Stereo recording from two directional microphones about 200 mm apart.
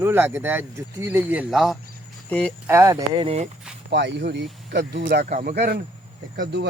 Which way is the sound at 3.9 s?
60° right (ahead or behind).